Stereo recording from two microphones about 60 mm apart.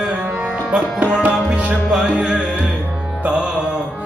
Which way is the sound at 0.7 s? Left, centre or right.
Centre.